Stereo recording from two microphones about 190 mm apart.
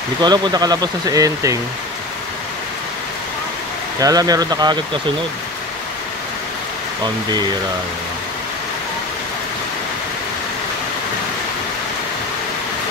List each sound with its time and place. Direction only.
0.2 s speech: 20° right (ahead or behind)
4.0 s speech: 20° right (ahead or behind)